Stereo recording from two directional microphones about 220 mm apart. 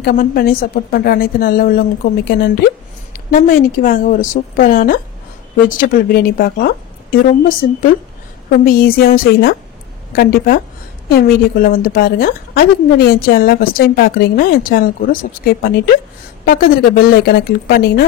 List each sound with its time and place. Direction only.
0.0 s a woman's voice: 40° left (ahead or behind)
16.4 s a woman's voice: 45° left (ahead or behind)